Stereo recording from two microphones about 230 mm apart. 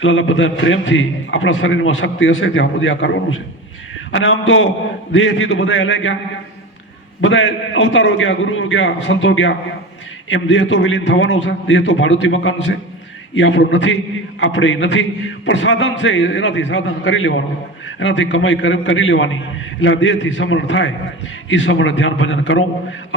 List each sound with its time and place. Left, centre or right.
0.0 s a man's voice: left
7.2 s a man's voice: left